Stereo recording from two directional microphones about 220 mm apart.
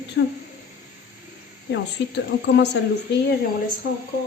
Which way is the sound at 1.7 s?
50° left (ahead or behind).